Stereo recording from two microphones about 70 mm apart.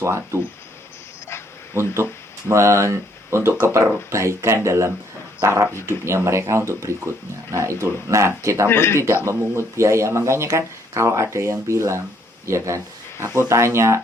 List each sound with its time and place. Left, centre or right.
0.0 s speech: right
1.7 s speech: right
8.6 s speech: left
9.2 s speech: right